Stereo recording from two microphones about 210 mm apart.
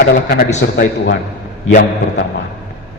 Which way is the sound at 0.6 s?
60° left (ahead or behind).